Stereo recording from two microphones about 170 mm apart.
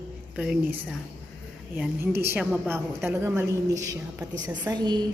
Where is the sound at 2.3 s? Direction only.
10° right (ahead or behind).